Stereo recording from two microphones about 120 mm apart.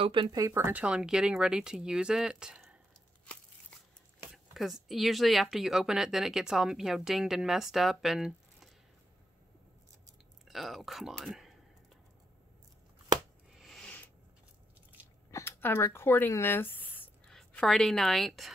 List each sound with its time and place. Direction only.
0.0 s speech: 45° right (ahead or behind)
0.4 s speech: 20° right (ahead or behind)
4.3 s speech: centre (ahead or behind)
10.5 s speech: centre (ahead or behind)
13.6 s a sound: 5° left (ahead or behind)
15.3 s a woman's voice: 20° left (ahead or behind); by 18.5 s centre (ahead or behind)